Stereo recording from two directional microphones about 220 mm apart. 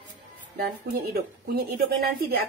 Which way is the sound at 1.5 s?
45° right (ahead or behind).